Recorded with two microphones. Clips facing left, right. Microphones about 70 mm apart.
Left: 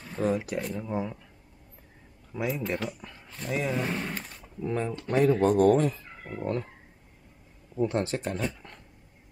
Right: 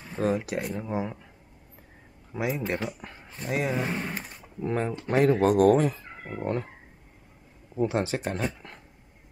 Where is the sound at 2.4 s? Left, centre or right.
Centre.